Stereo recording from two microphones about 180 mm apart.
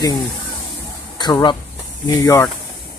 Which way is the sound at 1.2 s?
25° left (ahead or behind).